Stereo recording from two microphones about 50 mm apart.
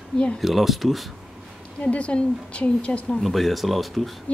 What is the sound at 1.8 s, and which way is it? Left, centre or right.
Speech, left.